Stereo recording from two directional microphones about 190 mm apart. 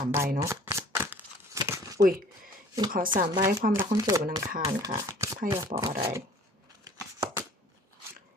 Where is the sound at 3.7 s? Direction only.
20° right (ahead or behind).